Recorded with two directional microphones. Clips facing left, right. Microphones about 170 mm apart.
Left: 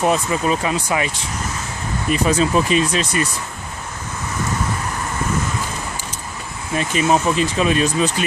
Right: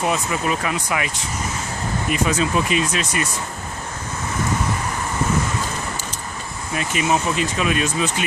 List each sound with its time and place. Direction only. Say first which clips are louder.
0.0 s speech: left 4 dB; 35° left (ahead or behind)
6.9 s speech: left 3 dB; 35° left (ahead or behind)